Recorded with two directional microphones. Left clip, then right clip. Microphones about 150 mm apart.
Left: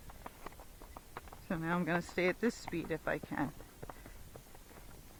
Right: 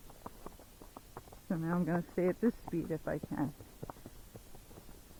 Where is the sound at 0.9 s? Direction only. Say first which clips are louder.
Left 2 dB; 35° left (ahead or behind).